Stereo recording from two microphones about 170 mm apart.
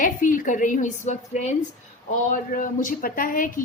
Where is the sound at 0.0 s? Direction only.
50° left (ahead or behind).